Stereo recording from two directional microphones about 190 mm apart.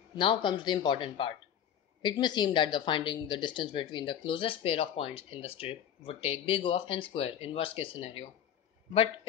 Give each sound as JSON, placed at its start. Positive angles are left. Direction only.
{"t": 0.2, "sound": "speech", "side_deg": 25}